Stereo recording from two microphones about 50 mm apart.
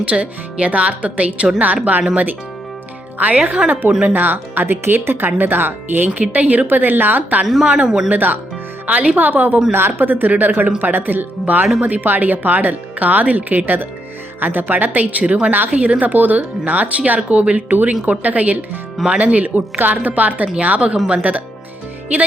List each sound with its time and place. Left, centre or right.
0.1 s speech: right
3.2 s speech: right
6.3 s speech: right
7.4 s speech: centre
8.1 s speech: right
8.9 s speech: right
9.1 s speech: right